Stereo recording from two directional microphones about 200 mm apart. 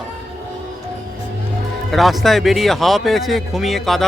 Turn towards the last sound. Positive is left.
turn(degrees=0)  # may be behind; listen again after turning